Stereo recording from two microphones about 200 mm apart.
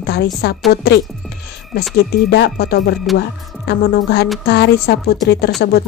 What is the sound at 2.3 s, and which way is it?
Speech, 55° left (ahead or behind).